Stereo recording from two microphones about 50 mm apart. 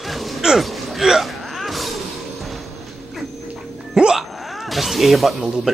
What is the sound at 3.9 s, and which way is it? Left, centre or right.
Music, centre.